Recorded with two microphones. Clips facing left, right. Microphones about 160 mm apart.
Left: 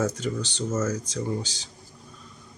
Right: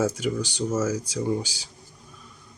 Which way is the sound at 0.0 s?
10° right (ahead or behind).